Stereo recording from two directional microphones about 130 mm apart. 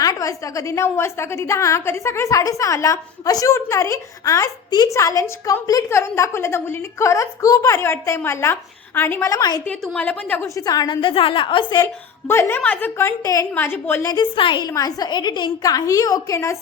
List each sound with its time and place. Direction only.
0.0 s a woman's voice: 25° left (ahead or behind)
9.6 s a woman's voice: 10° left (ahead or behind); by 11.9 s 35° left (ahead or behind)
12.3 s a woman's voice: 20° left (ahead or behind)
14.1 s a woman's voice: 35° left (ahead or behind)